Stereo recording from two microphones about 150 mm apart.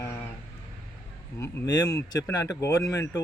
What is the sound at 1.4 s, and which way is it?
Speech, 25° left (ahead or behind).